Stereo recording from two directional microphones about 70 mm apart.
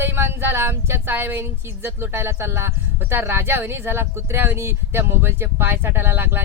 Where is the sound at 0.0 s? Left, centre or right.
Right.